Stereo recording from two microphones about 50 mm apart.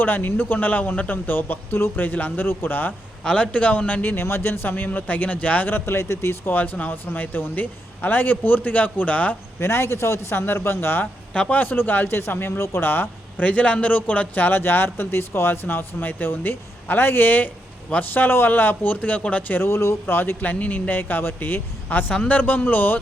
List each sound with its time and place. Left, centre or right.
0.0 s speech: left
3.2 s a man's voice: left
4.0 s speech: left
5.6 s a man's voice: left
6.5 s speech: left
9.6 s a man's voice: left
11.0 s speech: left
11.5 s speech: left
12.0 s speech: left
12.3 s a man's voice: left
12.5 s speech: left
13.4 s speech: left
19.6 s speech: left
20.4 s speech: left